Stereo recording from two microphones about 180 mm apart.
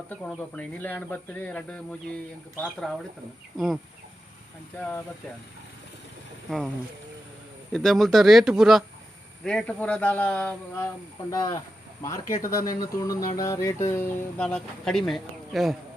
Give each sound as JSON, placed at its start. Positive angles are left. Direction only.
{"t": 0.1, "sound": "speech", "side_deg": 10}
{"t": 4.8, "sound": "speech", "side_deg": 10}
{"t": 6.5, "sound": "speech", "side_deg": 0}
{"t": 7.7, "sound": "speech", "side_deg": 0}
{"t": 11.3, "sound": "speech", "side_deg": 20}